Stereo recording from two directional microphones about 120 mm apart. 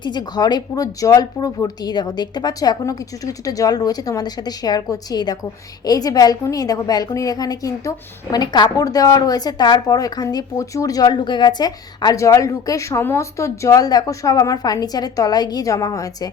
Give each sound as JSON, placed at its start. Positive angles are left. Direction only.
{"t": 0.0, "sound": "a woman's voice", "side_deg": 35}